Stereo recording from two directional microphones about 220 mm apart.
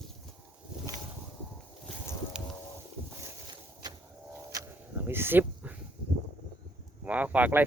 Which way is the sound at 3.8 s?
20° right (ahead or behind).